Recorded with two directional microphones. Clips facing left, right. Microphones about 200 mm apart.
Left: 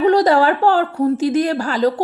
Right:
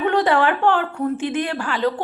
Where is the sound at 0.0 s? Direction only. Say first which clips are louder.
Left 5 dB; 40° left (ahead or behind).